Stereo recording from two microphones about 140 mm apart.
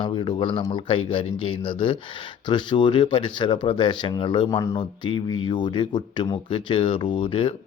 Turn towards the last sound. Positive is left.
turn(degrees=40)  # may be behind; listen again after turning